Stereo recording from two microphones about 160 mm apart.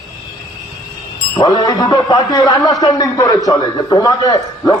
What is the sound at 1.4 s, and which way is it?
A man's voice, 25° left (ahead or behind).